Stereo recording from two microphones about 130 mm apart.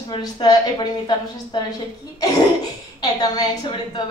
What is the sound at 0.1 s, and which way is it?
A woman's voice, 35° left (ahead or behind).